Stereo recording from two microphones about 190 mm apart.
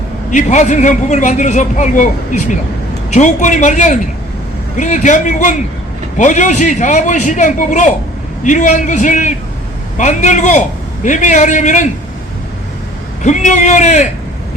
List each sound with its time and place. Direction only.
0.3 s a man's voice: 40° left (ahead or behind)
13.2 s a man's voice: 40° left (ahead or behind)